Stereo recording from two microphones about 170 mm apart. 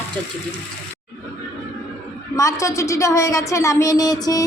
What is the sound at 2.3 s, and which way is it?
A woman's voice, 20° left (ahead or behind).